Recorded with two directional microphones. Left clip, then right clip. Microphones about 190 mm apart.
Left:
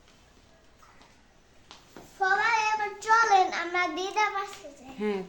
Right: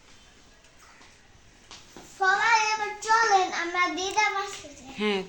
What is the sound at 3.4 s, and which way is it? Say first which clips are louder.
Child singing: right 2 dB; 30° left (ahead or behind).